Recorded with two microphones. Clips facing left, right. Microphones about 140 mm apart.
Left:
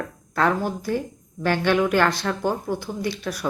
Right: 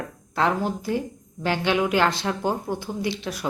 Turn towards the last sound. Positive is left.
turn(degrees=-25)  # may be behind; listen again after turning